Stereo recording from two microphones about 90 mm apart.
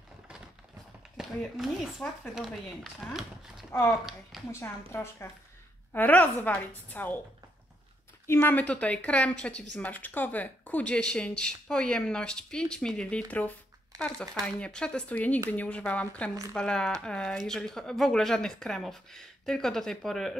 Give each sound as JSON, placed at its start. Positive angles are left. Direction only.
{"t": 1.1, "sound": "speech", "side_deg": 0}
{"t": 4.5, "sound": "a woman's voice", "side_deg": 30}
{"t": 5.9, "sound": "a woman's voice", "side_deg": 15}
{"t": 8.3, "sound": "speech", "side_deg": 25}